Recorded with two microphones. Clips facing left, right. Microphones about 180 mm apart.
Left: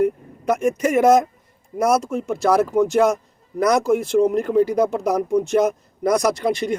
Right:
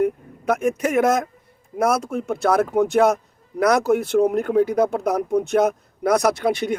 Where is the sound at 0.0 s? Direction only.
55° right (ahead or behind).